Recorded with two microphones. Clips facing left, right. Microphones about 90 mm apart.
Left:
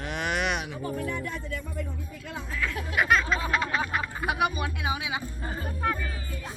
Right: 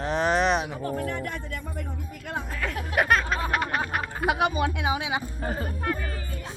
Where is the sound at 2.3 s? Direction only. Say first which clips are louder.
Right 1 dB; 55° right (ahead or behind).